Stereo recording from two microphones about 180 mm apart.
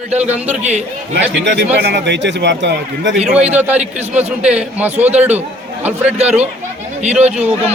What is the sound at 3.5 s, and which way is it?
A man's voice, 10° right (ahead or behind).